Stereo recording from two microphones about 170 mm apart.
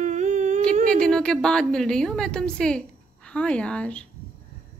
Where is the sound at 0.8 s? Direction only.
5° left (ahead or behind).